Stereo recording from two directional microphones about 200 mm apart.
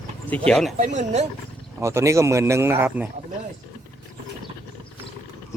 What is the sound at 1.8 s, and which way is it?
Speech, 15° right (ahead or behind).